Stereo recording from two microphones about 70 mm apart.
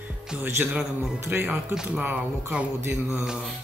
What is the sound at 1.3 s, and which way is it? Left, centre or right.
Speech, right.